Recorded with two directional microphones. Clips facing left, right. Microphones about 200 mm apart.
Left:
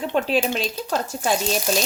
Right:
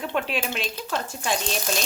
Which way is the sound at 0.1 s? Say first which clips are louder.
Left 8 dB; 35° left (ahead or behind).